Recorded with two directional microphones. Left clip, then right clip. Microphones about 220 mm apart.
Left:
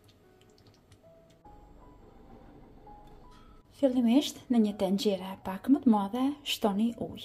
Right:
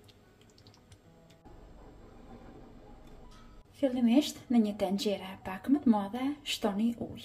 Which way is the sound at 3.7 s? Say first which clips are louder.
Left 2 dB; 25° left (ahead or behind).